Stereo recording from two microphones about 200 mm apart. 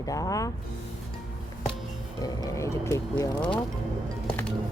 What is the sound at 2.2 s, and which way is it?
Speech, 20° left (ahead or behind).